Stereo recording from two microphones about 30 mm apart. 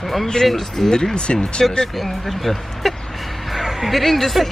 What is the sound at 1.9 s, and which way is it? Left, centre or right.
Speech, centre.